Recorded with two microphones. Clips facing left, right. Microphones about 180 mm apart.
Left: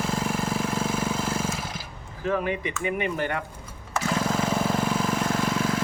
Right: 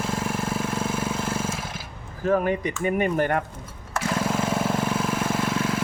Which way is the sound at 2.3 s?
45° right (ahead or behind).